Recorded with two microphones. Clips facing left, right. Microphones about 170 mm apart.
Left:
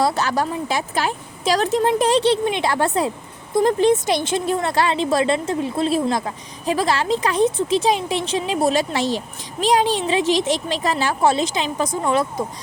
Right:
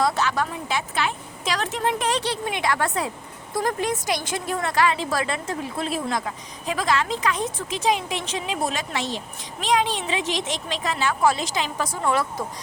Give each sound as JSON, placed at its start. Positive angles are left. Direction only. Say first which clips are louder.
{"t": 0.0, "sound": "speech", "louder": "left 3 dB", "side_deg": 35}